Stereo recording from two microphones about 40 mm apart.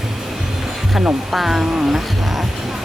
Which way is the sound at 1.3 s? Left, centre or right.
Centre.